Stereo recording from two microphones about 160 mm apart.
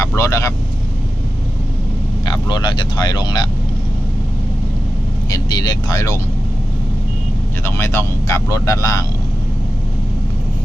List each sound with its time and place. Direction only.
0.2 s speech: 20° left (ahead or behind)
2.2 s speech: 25° left (ahead or behind)
5.3 s speech: 25° left (ahead or behind)
7.6 s speech: 15° left (ahead or behind)